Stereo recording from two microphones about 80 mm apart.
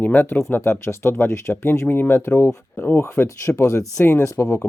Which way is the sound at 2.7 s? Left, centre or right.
Left.